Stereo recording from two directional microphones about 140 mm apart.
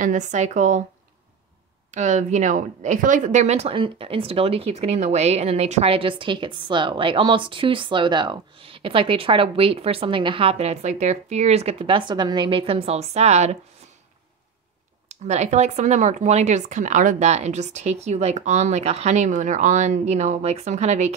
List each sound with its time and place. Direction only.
0.0 s speech: 60° right (ahead or behind)
1.9 s a woman's voice: 55° right (ahead or behind)
12.1 s a woman's voice: 30° right (ahead or behind); by 13.6 s 50° right (ahead or behind)
15.0 s speech: 55° right (ahead or behind)